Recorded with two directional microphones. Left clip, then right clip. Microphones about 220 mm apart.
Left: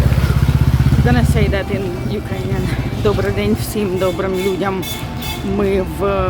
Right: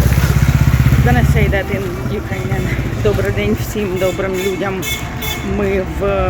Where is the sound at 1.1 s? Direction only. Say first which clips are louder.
Right 2 dB; 10° left (ahead or behind).